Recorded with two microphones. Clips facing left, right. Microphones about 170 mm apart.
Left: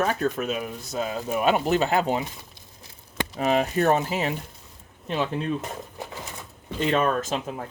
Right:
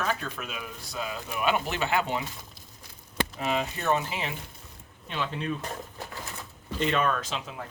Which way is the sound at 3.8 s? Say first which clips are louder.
Left 6 dB; 45° left (ahead or behind).